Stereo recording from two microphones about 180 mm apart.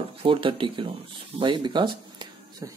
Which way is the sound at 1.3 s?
25° right (ahead or behind).